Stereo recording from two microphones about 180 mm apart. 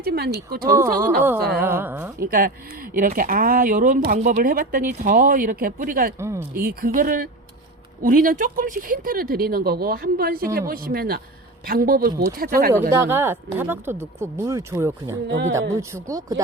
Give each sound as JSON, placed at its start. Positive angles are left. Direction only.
{"t": 0.0, "sound": "speech", "side_deg": -60}
{"t": 1.5, "sound": "speech", "side_deg": -10}
{"t": 2.2, "sound": "speech", "side_deg": -55}
{"t": 6.1, "sound": "speech", "side_deg": -15}
{"t": 6.6, "sound": "speech", "side_deg": -50}
{"t": 12.9, "sound": "speech", "side_deg": -15}
{"t": 15.3, "sound": "speech", "side_deg": -90}
{"t": 15.7, "sound": "speech", "side_deg": -15}